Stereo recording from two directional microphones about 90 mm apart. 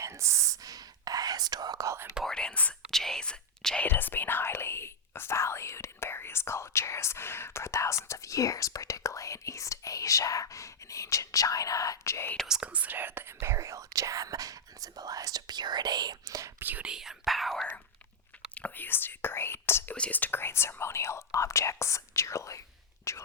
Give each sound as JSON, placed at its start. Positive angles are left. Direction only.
{"t": 0.0, "sound": "whispering", "side_deg": -35}
{"t": 2.2, "sound": "whispering", "side_deg": 10}
{"t": 2.9, "sound": "speech", "side_deg": 5}
{"t": 3.8, "sound": "speech", "side_deg": 20}
{"t": 12.5, "sound": "speech", "side_deg": -10}
{"t": 16.6, "sound": "speech", "side_deg": -20}
{"t": 18.5, "sound": "speech", "side_deg": 20}